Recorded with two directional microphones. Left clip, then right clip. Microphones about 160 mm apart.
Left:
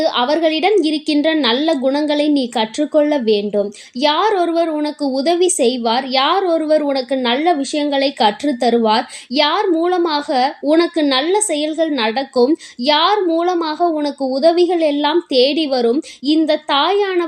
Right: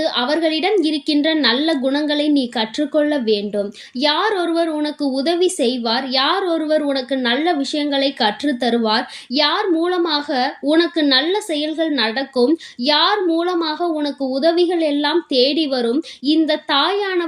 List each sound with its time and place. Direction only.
0.0 s a woman's voice: 30° left (ahead or behind)